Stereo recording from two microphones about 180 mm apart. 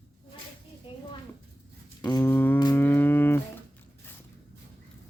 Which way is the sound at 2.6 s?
15° left (ahead or behind).